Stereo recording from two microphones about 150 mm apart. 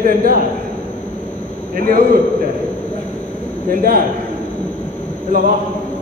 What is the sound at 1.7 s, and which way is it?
Speech, 70° right (ahead or behind).